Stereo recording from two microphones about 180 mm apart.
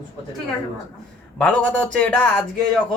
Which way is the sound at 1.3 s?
5° left (ahead or behind).